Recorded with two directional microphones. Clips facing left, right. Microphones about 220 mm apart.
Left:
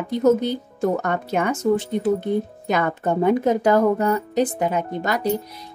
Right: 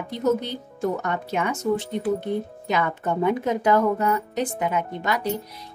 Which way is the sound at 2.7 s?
45° left (ahead or behind).